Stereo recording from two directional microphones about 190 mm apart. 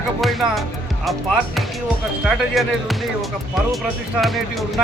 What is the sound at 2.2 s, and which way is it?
Speech, centre (ahead or behind).